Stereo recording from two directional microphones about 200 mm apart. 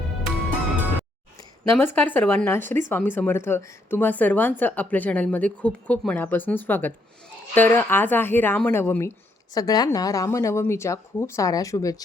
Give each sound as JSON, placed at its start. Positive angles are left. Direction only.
{"t": 1.7, "sound": "a woman's voice", "side_deg": 10}